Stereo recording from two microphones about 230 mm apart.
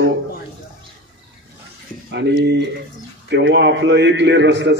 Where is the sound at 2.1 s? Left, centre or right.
Right.